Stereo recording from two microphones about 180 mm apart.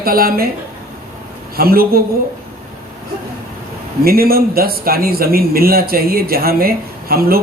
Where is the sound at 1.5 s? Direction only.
55° right (ahead or behind).